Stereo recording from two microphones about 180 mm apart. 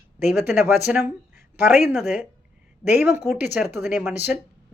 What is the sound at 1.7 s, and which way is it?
A woman's voice, centre (ahead or behind).